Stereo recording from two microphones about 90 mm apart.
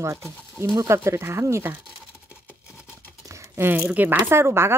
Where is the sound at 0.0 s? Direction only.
30° right (ahead or behind).